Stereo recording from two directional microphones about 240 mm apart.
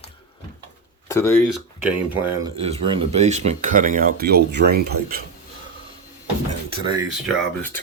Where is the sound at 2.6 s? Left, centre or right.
Right.